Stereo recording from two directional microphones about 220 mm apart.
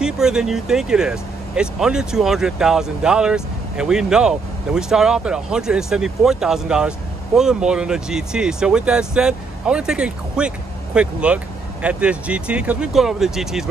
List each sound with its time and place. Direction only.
0.0 s speech: 5° right (ahead or behind)